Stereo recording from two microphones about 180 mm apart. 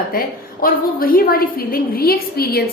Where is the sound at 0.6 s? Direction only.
55° left (ahead or behind).